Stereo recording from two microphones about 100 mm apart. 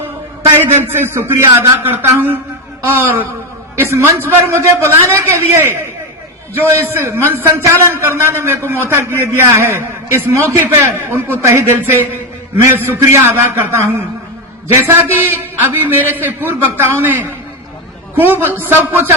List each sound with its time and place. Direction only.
0.4 s a man's voice: 25° right (ahead or behind)
3.8 s a man's voice: 25° right (ahead or behind)